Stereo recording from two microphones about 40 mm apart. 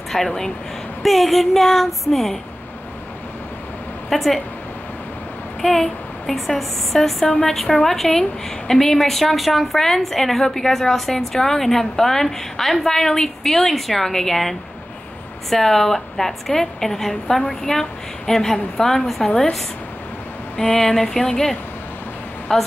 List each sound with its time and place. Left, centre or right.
0.1 s a woman's voice: centre
4.1 s a woman's voice: centre
5.6 s speech: centre
7.2 s a woman's voice: centre
7.5 s a woman's voice: centre
20.5 s a woman's voice: centre